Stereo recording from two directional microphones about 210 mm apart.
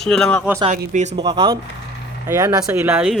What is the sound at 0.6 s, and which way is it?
Speech, 35° right (ahead or behind).